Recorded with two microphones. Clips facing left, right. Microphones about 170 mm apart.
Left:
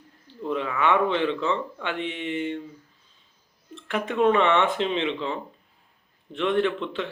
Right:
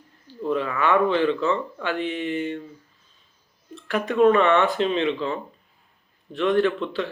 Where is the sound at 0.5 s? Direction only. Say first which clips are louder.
Right 1 dB; 20° left (ahead or behind).